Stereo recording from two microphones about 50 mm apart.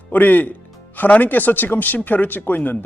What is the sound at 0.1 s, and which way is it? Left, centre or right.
Speech, left.